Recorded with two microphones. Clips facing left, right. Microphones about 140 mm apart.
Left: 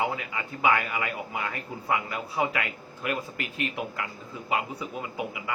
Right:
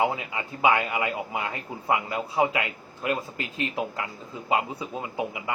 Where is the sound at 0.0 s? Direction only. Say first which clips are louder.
Right 3 dB; 25° right (ahead or behind).